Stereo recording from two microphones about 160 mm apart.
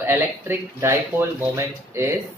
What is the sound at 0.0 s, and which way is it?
Speech, 15° right (ahead or behind).